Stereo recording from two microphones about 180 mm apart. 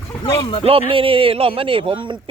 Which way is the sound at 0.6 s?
30° right (ahead or behind).